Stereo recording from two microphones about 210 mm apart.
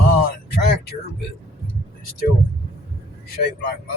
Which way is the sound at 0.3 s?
45° left (ahead or behind).